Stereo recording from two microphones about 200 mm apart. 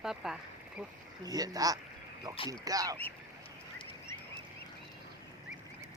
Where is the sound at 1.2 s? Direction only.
20° right (ahead or behind).